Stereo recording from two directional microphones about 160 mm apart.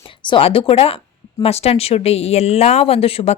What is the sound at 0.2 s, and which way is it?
Speech, 30° left (ahead or behind).